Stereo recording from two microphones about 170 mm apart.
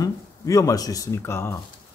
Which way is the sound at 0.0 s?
20° left (ahead or behind).